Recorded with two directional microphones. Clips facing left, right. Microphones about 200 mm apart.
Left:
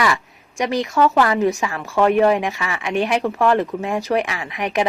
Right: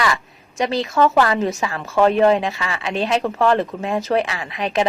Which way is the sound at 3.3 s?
15° left (ahead or behind).